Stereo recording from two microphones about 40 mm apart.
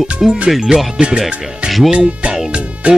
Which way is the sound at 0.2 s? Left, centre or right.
Centre.